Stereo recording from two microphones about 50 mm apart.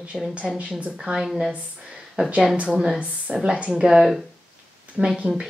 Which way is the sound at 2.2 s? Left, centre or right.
Right.